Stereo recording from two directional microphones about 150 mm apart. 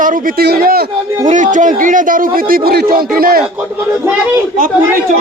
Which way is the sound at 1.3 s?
55° right (ahead or behind).